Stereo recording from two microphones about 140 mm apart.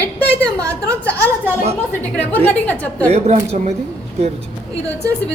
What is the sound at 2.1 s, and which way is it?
Speech, 10° left (ahead or behind).